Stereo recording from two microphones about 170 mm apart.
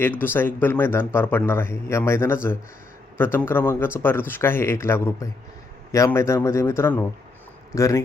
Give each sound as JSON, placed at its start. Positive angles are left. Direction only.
{"t": 0.0, "sound": "a man's voice", "side_deg": 10}